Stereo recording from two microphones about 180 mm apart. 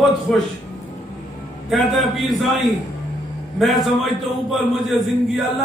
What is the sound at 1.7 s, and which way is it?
A man's voice, centre (ahead or behind).